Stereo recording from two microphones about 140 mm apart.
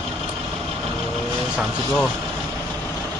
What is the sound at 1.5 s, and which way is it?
Speech, 5° right (ahead or behind).